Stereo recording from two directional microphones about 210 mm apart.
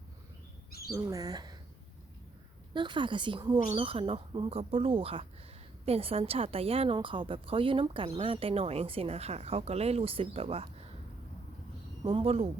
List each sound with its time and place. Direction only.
0.9 s speech: 15° right (ahead or behind)
2.7 s a woman's voice: 20° right (ahead or behind)
12.0 s a woman's voice: 25° right (ahead or behind)